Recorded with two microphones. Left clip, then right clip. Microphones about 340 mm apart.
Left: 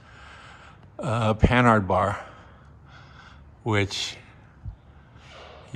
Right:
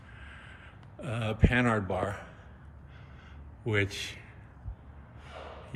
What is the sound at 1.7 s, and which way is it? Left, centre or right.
Speech, left.